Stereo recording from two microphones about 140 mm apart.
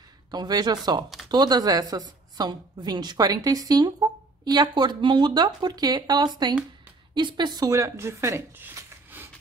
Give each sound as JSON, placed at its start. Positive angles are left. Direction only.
{"t": 0.3, "sound": "a woman's voice", "side_deg": -30}